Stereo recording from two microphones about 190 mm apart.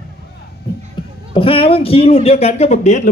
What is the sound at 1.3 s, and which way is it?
Speech, 30° left (ahead or behind).